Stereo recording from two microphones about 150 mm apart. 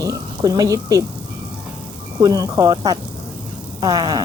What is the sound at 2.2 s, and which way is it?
Speech, 25° right (ahead or behind).